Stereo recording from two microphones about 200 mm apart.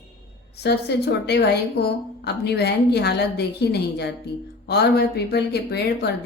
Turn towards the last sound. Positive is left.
turn(degrees=55)  # may be behind; listen again after turning